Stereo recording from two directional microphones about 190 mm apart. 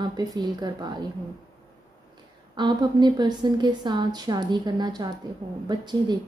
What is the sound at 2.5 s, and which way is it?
A woman's voice, 25° right (ahead or behind).